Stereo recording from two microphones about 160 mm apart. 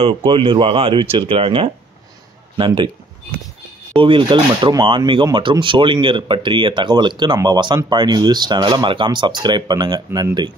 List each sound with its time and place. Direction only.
0.0 s speech: 35° right (ahead or behind)
4.0 s speech: 30° right (ahead or behind)